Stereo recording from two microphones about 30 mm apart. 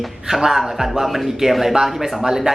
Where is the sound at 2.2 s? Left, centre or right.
Centre.